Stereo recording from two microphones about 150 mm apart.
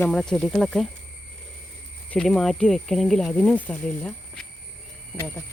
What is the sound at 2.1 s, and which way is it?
Speech, 5° left (ahead or behind).